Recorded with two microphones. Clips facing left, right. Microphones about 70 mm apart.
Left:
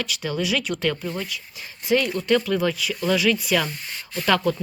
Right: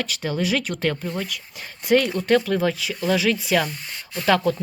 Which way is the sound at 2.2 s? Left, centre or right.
Right.